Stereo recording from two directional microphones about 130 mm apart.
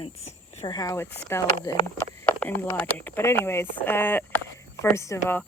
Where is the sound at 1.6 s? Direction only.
35° left (ahead or behind).